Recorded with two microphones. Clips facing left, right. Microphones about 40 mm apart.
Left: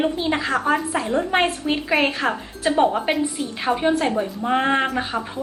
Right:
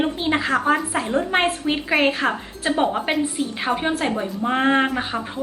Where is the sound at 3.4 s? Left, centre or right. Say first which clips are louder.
Left 1 dB; centre.